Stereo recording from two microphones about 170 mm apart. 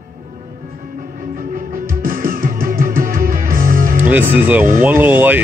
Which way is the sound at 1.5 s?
55° right (ahead or behind).